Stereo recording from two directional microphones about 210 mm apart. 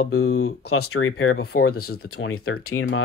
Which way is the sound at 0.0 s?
90° left.